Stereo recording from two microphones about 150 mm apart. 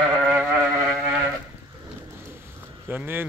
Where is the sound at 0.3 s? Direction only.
Centre (ahead or behind).